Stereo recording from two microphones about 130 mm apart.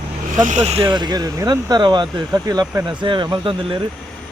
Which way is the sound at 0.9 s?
35° right (ahead or behind).